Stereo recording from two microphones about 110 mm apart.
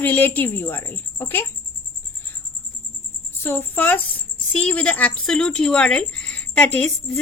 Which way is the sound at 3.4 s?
20° left (ahead or behind).